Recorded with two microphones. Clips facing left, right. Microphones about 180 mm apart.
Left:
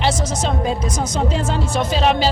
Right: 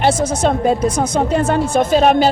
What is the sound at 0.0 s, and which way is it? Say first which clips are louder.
Speech: right 6 dB; 55° right (ahead or behind).